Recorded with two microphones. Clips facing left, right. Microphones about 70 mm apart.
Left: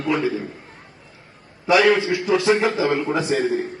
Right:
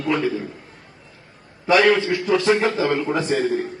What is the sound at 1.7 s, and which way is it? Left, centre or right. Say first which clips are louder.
A man's voice: even; centre.